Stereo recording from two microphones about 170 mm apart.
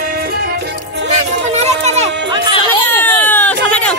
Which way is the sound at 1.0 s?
40° right (ahead or behind).